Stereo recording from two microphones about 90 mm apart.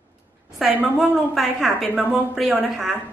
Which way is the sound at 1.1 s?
Centre (ahead or behind).